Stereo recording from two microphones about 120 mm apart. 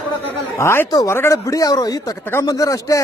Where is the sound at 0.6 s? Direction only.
20° left (ahead or behind).